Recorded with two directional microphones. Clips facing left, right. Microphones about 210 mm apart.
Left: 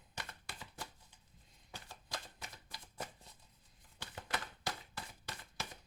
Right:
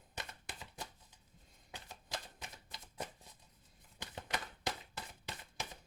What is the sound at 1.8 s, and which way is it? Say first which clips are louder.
Typewriter: right 2 dB; 20° right (ahead or behind).